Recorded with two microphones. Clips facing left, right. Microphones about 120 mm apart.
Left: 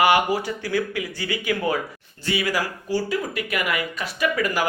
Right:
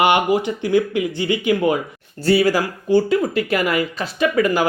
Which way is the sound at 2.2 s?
35° right (ahead or behind).